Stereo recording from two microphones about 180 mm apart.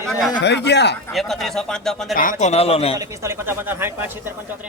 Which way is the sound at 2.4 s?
35° left (ahead or behind).